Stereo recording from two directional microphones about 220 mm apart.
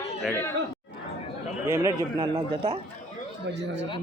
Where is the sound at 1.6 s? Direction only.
15° right (ahead or behind).